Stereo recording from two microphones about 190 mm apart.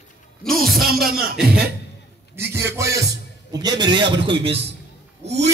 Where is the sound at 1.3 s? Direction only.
5° right (ahead or behind).